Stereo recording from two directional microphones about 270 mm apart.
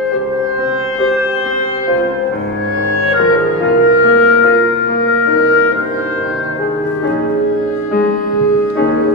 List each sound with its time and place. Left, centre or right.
4.1 s music: left
5.4 s music: left